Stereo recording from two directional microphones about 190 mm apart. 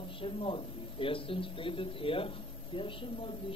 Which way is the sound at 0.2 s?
30° left (ahead or behind).